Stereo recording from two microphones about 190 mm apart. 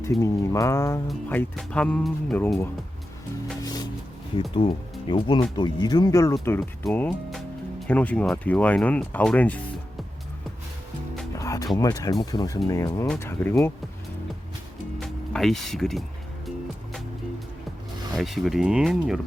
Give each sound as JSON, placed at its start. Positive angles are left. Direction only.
{"t": 0.0, "sound": "speech", "side_deg": 15}
{"t": 3.6, "sound": "music", "side_deg": 20}
{"t": 4.5, "sound": "speech", "side_deg": 25}
{"t": 11.3, "sound": "music", "side_deg": 15}
{"t": 11.8, "sound": "speech", "side_deg": 20}
{"t": 14.9, "sound": "music", "side_deg": 5}
{"t": 18.1, "sound": "speech", "side_deg": 0}